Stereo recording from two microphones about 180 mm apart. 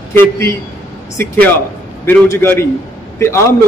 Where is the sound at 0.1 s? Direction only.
15° left (ahead or behind).